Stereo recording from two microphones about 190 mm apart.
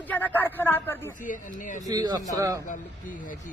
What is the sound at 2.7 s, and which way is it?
Speech, 45° left (ahead or behind).